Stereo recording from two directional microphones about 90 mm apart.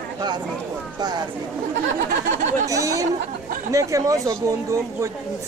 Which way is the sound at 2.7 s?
40° right (ahead or behind).